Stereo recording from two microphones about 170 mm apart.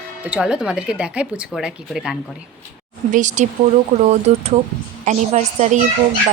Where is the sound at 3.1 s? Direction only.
45° right (ahead or behind).